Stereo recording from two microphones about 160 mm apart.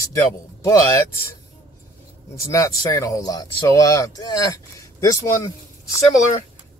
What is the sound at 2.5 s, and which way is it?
Speech, 20° left (ahead or behind).